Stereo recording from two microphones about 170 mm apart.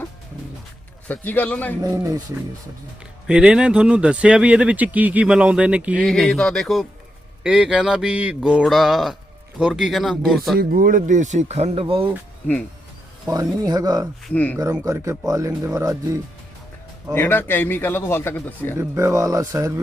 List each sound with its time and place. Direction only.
1.0 s a man's voice: 10° left (ahead or behind)
3.2 s speech: 5° right (ahead or behind)
10.6 s speech: 55° right (ahead or behind); by 12.1 s 30° right (ahead or behind)
13.2 s speech: 20° right (ahead or behind)
14.3 s a man's voice: 5° left (ahead or behind)
14.6 s speech: 20° right (ahead or behind)
17.2 s a man's voice: 10° left (ahead or behind)
18.8 s speech: 15° right (ahead or behind)